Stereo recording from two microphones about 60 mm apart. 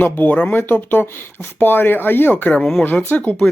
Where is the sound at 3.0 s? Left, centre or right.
Left.